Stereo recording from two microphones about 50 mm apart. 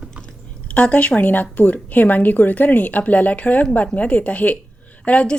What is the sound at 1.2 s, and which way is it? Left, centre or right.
A woman's voice, left.